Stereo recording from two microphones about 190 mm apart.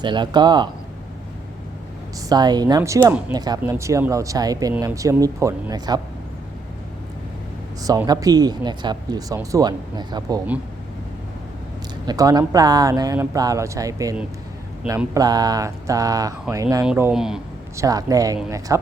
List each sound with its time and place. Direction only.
0.0 s speech: 25° right (ahead or behind)
2.3 s speech: 20° right (ahead or behind)
7.8 s speech: 20° right (ahead or behind)
12.0 s speech: 20° right (ahead or behind)
16.8 s speech: 5° right (ahead or behind)
17.7 s speech: 20° right (ahead or behind)